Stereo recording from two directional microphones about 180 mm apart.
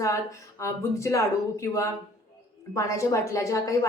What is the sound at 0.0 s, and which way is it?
A woman's voice, 15° left (ahead or behind).